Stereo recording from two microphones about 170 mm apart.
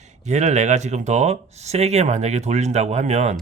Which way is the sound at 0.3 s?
45° right (ahead or behind).